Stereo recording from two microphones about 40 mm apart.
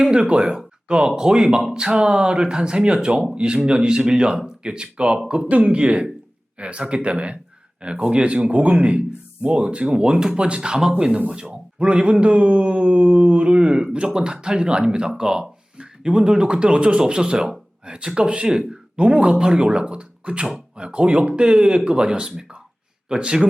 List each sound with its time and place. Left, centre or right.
0.1 s a man's voice: right
18.4 s speech: centre
18.9 s speech: right